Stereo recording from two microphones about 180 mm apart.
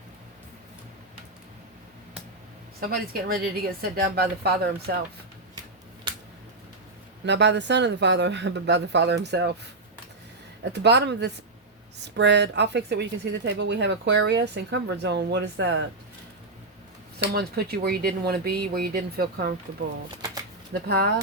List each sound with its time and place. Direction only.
2.9 s speech: 55° right (ahead or behind)
7.3 s a woman's voice: 75° right (ahead or behind)
10.6 s a woman's voice: 70° right (ahead or behind)
17.3 s speech: 60° right (ahead or behind)
20.8 s speech: 65° right (ahead or behind)